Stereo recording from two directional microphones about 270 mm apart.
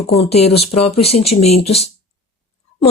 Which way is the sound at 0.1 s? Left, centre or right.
Left.